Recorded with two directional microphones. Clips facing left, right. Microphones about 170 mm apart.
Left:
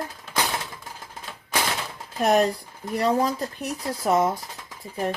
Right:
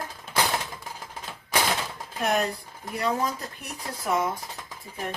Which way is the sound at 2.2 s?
40° left (ahead or behind).